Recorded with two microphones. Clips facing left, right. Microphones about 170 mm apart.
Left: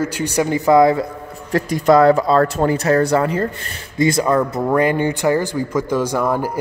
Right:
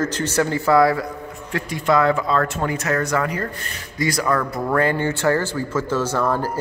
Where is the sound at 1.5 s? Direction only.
40° left (ahead or behind); by 6.6 s 15° left (ahead or behind).